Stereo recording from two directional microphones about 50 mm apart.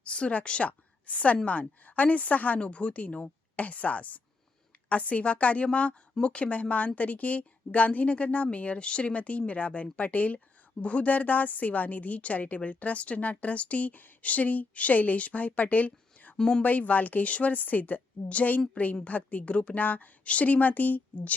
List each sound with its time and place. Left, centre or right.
0.0 s a woman's voice: left
16.4 s speech: centre
16.6 s a woman's voice: left